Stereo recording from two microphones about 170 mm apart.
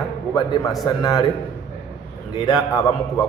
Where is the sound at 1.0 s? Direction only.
20° left (ahead or behind).